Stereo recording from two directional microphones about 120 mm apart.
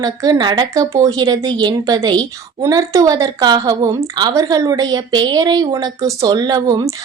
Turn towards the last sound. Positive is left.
turn(degrees=-35)  # may be behind; listen again after turning